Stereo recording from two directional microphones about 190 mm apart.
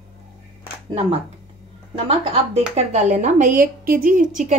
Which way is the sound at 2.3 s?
35° right (ahead or behind).